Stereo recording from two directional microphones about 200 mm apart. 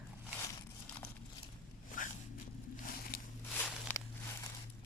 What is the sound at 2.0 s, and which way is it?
Walk, 40° left (ahead or behind).